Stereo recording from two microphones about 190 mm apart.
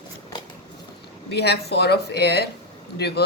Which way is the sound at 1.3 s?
60° left (ahead or behind).